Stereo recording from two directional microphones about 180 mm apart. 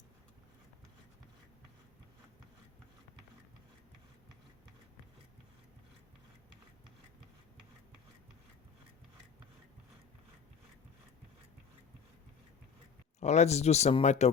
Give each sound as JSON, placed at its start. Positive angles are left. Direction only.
{"t": 13.1, "sound": "speech", "side_deg": 40}